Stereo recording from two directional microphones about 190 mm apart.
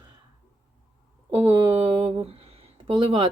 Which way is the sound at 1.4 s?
15° right (ahead or behind).